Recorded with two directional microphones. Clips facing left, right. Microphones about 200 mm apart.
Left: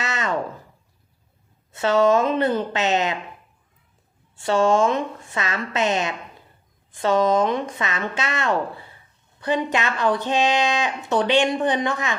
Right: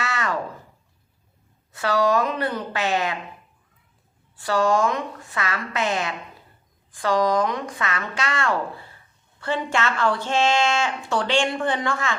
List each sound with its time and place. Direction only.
0.0 s a sound: 20° left (ahead or behind)
1.7 s a woman's voice: 25° left (ahead or behind)
4.4 s a woman's voice: 25° left (ahead or behind)